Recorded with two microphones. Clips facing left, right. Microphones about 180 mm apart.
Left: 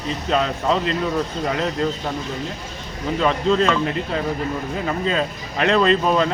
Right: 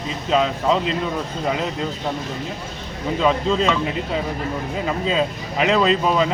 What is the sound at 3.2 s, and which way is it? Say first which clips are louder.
Speech: left 1 dB; 5° right (ahead or behind).